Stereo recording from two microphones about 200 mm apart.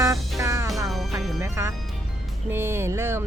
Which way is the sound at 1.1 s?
10° right (ahead or behind).